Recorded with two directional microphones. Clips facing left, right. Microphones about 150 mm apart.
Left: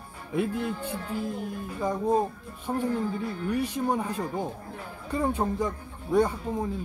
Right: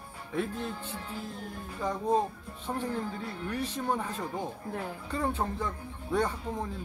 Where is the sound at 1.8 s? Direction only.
10° left (ahead or behind).